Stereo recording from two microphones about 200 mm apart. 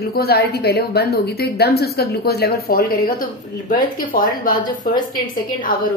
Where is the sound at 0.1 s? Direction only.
50° left (ahead or behind).